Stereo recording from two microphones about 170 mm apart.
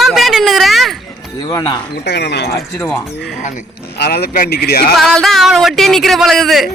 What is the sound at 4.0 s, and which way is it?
Speech, 65° left (ahead or behind).